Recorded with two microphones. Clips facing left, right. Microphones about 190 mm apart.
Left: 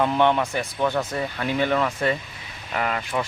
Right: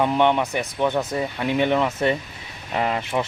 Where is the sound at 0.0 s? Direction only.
15° right (ahead or behind).